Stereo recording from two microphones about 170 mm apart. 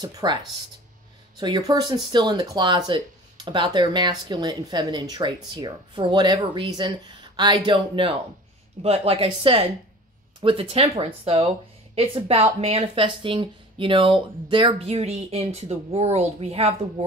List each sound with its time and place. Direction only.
0.0 s speech: 25° right (ahead or behind)
1.4 s speech: 25° right (ahead or behind)